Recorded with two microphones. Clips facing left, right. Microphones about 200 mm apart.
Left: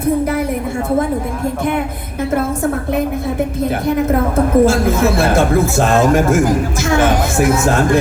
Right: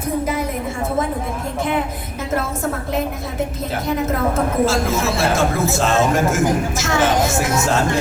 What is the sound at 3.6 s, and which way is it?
Speech, 60° left (ahead or behind).